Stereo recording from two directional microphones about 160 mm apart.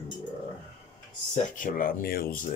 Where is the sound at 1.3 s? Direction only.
55° left (ahead or behind).